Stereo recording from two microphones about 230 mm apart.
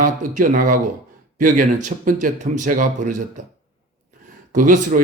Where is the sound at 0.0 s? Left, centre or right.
Right.